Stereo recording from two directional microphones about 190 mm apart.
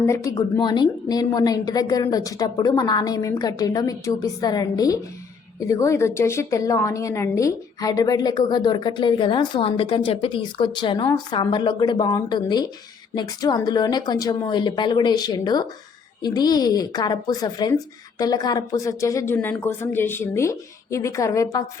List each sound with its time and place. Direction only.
0.0 s a woman's voice: 15° left (ahead or behind)